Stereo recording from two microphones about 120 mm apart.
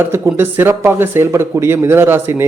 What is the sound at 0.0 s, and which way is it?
Speech, 20° right (ahead or behind).